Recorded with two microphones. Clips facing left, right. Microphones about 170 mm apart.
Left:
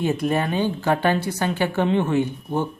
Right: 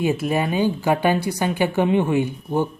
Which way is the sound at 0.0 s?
10° right (ahead or behind).